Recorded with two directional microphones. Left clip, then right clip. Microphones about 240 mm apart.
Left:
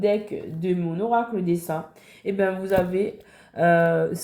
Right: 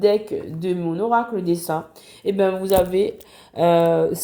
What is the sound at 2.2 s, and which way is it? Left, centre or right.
Speech, right.